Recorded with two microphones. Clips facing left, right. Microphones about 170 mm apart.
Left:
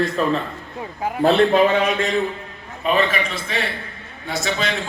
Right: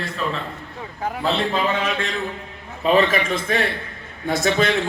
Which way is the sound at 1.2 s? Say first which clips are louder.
Left 8 dB; 55° left (ahead or behind).